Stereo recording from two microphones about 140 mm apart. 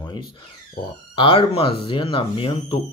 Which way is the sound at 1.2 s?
40° left (ahead or behind).